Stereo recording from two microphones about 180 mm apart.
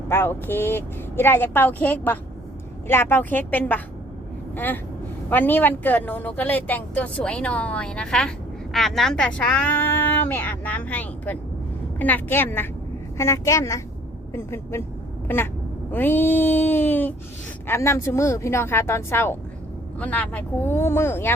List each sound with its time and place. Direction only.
0.1 s speech: 10° left (ahead or behind)